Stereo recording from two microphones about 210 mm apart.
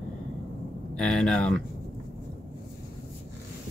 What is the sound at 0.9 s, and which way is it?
Speech, 5° left (ahead or behind).